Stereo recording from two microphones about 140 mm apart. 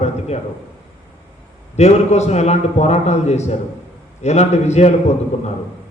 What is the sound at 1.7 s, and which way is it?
A man's voice, 50° left (ahead or behind).